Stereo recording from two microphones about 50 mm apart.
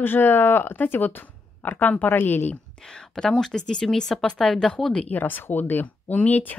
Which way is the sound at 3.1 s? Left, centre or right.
Centre.